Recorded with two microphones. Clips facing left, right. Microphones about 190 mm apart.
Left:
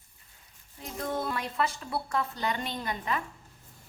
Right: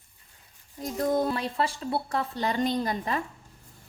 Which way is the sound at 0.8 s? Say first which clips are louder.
Right 7 dB; 40° right (ahead or behind).